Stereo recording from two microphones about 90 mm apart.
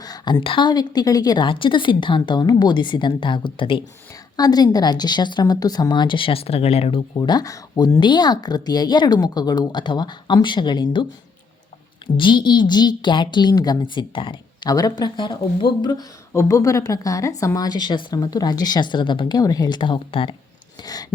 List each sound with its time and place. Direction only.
0.0 s a sound: 50° left (ahead or behind); by 0.7 s 65° left (ahead or behind)
0.7 s a woman's voice: 50° left (ahead or behind)
1.5 s a woman's voice: 70° left (ahead or behind)
4.4 s a woman's voice: 45° left (ahead or behind); by 6.5 s 85° left
7.2 s a woman's voice: 50° left (ahead or behind)
7.9 s a woman's voice: 60° left (ahead or behind)
12.1 s a woman's voice: 60° left (ahead or behind)
14.7 s a woman's voice: 45° left (ahead or behind); by 15.9 s 65° left (ahead or behind)
16.3 s a woman's voice: 35° left (ahead or behind); by 20.3 s 80° left
20.8 s a woman's voice: 45° left (ahead or behind)